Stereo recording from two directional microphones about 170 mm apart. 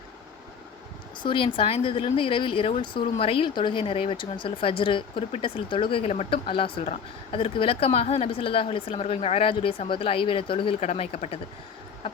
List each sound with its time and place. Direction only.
1.2 s a woman's voice: 30° left (ahead or behind)